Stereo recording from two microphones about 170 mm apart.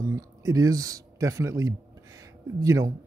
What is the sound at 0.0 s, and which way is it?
A man's voice, 20° right (ahead or behind).